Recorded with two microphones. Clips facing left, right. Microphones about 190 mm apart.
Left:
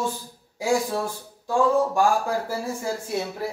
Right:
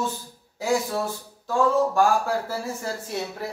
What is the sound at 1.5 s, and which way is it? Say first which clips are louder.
Speech: left 1 dB; 15° left (ahead or behind).